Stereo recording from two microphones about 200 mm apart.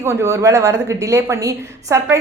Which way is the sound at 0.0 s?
15° right (ahead or behind).